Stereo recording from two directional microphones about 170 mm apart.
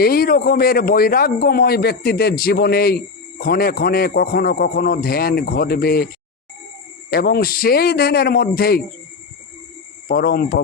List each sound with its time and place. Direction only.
0.0 s a man's voice: 60° left (ahead or behind)
7.1 s a man's voice: 65° left (ahead or behind)
10.1 s a man's voice: 65° left (ahead or behind)